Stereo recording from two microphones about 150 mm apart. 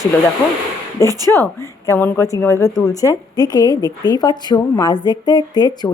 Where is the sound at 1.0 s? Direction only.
20° left (ahead or behind).